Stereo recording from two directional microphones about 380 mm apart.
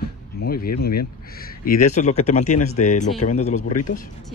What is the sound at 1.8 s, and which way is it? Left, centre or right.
Speech, centre.